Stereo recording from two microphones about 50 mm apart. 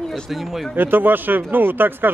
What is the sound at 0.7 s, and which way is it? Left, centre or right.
Speech, right.